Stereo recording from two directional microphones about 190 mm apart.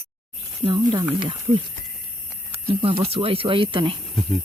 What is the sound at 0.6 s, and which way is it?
Speech, 25° right (ahead or behind).